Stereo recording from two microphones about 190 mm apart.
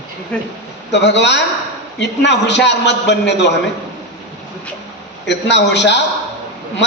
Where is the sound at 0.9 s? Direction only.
65° left (ahead or behind).